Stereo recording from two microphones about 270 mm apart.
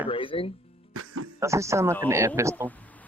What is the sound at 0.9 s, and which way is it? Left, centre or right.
Music, right.